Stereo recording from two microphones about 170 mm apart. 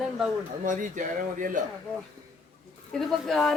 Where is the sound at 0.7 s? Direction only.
50° right (ahead or behind).